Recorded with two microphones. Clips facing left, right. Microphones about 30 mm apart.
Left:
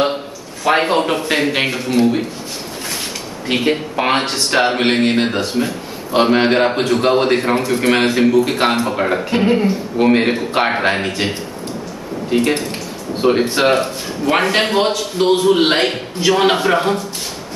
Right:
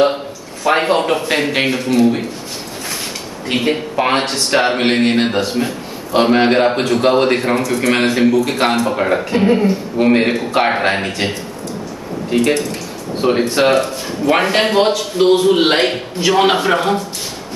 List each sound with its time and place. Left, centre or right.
0.7 s a man's voice: centre
3.5 s a man's voice: centre
7.6 s speech: left
7.9 s a man's voice: centre
13.2 s a man's voice: centre